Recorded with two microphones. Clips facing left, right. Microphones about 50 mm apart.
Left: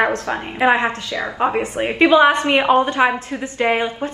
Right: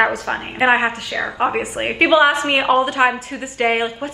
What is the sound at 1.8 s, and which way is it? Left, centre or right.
Speech, right.